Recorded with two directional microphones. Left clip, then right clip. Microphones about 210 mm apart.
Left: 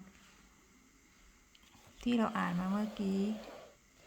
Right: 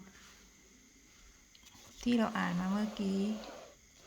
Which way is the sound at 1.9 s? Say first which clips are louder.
Right 1 dB; 5° left (ahead or behind).